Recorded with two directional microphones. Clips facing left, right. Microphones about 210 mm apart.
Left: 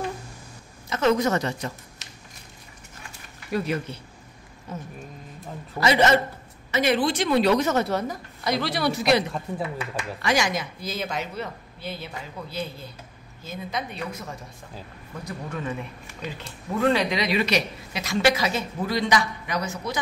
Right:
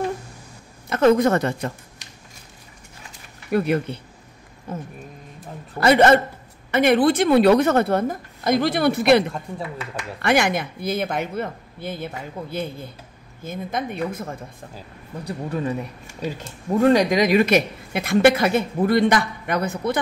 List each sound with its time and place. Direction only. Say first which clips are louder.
0.8 s a woman's voice: right 6 dB; 55° right (ahead or behind)
3.5 s a woman's voice: right 6 dB; 55° right (ahead or behind)
10.2 s a woman's voice: right 5 dB; 60° right (ahead or behind)
15.2 s speech: right 6 dB; 35° right (ahead or behind); by 20.0 s 55° right (ahead or behind)